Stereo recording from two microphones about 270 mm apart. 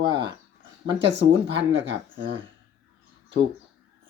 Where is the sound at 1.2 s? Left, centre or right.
Right.